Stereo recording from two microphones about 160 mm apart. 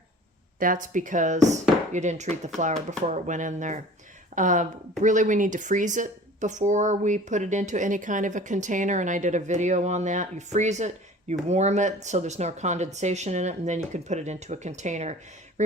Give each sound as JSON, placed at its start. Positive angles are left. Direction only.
{"t": 0.6, "sound": "speech", "side_deg": -55}